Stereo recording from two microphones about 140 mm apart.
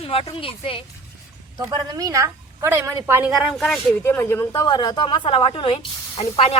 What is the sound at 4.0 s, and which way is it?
A woman's voice, 15° left (ahead or behind).